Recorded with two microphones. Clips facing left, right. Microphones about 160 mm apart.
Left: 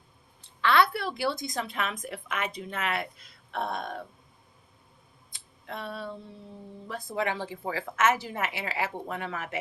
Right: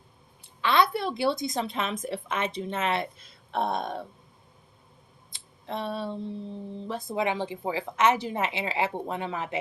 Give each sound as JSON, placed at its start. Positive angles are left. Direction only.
{"t": 0.4, "sound": "a woman's voice", "side_deg": -20}
{"t": 5.6, "sound": "a woman's voice", "side_deg": -25}